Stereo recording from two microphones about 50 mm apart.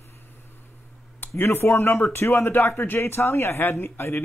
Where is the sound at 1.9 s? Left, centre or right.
Left.